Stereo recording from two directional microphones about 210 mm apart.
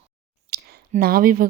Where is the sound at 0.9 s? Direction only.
45° right (ahead or behind).